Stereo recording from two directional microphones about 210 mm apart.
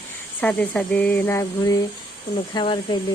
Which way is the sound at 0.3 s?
5° left (ahead or behind).